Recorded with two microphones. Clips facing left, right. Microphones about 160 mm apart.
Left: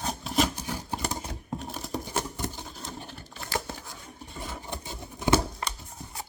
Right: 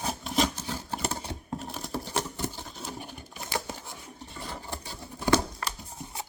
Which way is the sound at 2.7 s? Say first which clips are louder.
Right 1 dB; centre (ahead or behind).